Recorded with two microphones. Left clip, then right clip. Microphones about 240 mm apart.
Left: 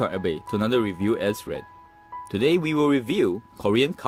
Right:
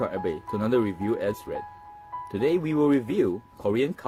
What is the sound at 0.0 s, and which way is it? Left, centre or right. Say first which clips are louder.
Speech: left 3 dB; left.